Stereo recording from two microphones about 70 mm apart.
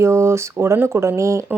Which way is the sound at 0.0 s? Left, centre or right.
Right.